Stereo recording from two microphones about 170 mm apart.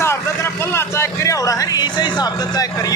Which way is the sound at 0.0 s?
15° left (ahead or behind).